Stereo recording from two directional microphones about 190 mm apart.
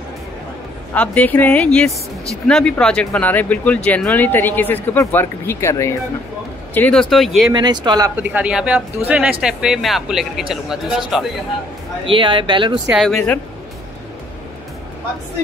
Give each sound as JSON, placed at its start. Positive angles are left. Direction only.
{"t": 0.9, "sound": "speech", "side_deg": 10}
{"t": 7.5, "sound": "speech", "side_deg": -25}
{"t": 8.2, "sound": "speech", "side_deg": -5}
{"t": 12.1, "sound": "speech", "side_deg": -25}
{"t": 12.9, "sound": "speech", "side_deg": 0}